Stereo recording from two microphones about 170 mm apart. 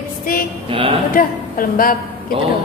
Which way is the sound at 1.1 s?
55° left (ahead or behind).